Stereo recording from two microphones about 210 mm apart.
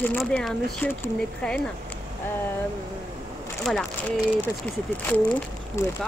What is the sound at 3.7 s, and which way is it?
Speech, centre (ahead or behind).